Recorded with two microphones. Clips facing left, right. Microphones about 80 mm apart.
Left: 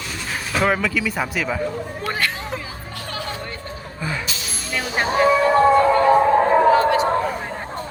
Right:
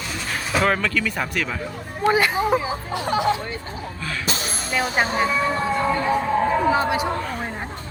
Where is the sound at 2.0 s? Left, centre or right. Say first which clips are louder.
Right 9 dB; centre.